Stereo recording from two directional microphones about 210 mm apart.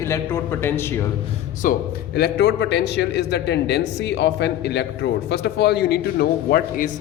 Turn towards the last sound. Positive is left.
turn(degrees=45)  # may be behind; listen again after turning